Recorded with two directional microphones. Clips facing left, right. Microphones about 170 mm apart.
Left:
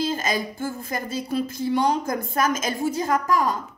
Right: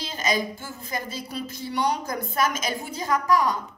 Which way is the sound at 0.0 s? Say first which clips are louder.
Left 2 dB; 50° left (ahead or behind).